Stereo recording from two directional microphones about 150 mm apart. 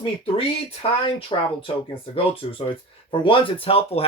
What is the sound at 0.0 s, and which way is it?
Speech, 40° left (ahead or behind).